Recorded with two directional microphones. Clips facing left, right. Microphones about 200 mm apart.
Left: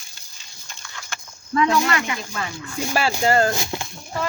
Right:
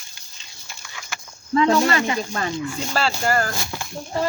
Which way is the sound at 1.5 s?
30° right (ahead or behind).